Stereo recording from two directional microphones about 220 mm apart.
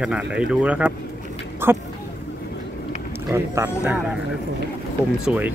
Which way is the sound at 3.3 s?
10° right (ahead or behind).